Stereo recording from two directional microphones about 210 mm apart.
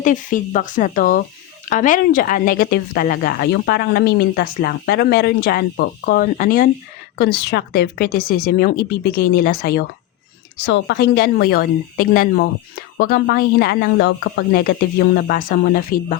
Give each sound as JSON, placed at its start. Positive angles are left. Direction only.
{"t": 0.0, "sound": "speech", "side_deg": 40}